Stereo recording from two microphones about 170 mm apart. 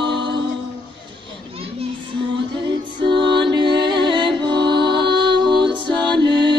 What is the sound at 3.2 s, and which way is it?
Music, 90° right.